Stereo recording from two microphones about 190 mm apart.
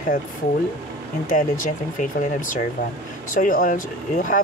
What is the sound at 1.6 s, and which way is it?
Speech, 45° left (ahead or behind).